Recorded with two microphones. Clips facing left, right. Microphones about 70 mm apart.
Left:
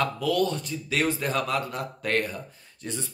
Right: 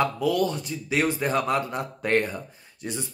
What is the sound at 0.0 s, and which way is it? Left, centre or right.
A man's voice, centre.